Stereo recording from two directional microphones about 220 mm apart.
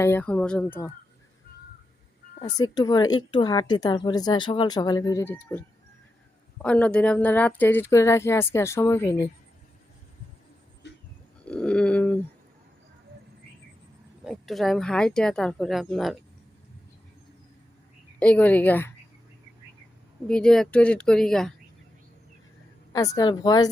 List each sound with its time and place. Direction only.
0.0 s speech: 10° left (ahead or behind)
2.4 s speech: 20° left (ahead or behind)
11.4 s a sound: 5° left (ahead or behind)
14.3 s speech: centre (ahead or behind)
18.2 s speech: 5° left (ahead or behind)
20.2 s speech: 5° left (ahead or behind)
23.1 s speech: 20° left (ahead or behind)